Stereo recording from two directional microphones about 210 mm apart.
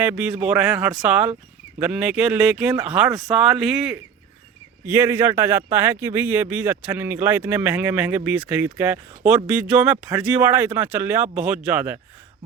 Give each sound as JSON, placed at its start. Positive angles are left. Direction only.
{"t": 0.0, "sound": "speech", "side_deg": -5}